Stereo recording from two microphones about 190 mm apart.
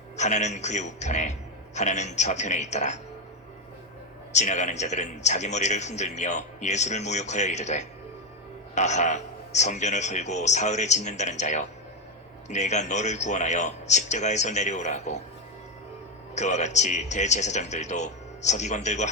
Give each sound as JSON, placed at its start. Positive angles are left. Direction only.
{"t": 0.2, "sound": "a man's voice", "side_deg": 40}
{"t": 4.3, "sound": "a man's voice", "side_deg": 40}
{"t": 16.3, "sound": "a man's voice", "side_deg": 40}